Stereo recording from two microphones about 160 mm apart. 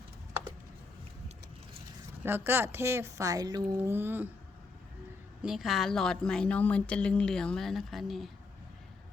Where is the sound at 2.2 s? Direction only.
15° right (ahead or behind).